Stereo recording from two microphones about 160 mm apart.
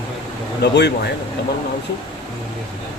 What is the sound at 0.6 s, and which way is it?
Speech, 90° left.